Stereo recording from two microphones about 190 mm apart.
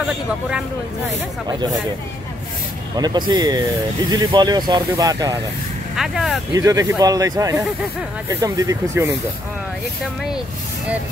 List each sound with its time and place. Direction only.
3.0 s speech: 20° right (ahead or behind)
5.9 s speech: centre (ahead or behind)
6.5 s speech: 20° right (ahead or behind)